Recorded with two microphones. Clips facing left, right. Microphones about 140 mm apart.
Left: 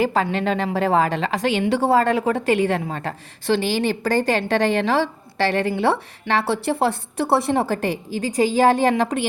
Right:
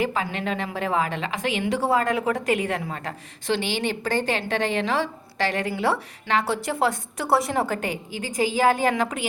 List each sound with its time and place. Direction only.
0.0 s a woman's voice: 35° left (ahead or behind)